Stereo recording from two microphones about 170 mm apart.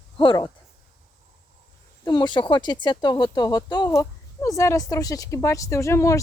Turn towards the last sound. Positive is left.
turn(degrees=15)  # may be behind; listen again after turning